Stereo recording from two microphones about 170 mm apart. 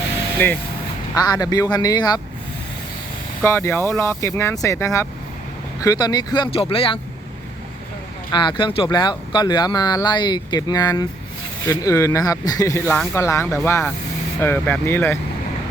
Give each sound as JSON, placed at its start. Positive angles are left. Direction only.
{"t": 0.3, "sound": "speech", "side_deg": 10}
{"t": 1.1, "sound": "speech", "side_deg": 20}
{"t": 3.4, "sound": "speech", "side_deg": 15}
{"t": 8.3, "sound": "speech", "side_deg": 25}